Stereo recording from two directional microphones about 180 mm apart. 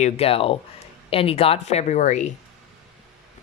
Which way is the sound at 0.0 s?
35° left (ahead or behind).